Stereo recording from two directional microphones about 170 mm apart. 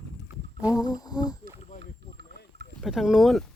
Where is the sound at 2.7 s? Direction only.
Centre (ahead or behind).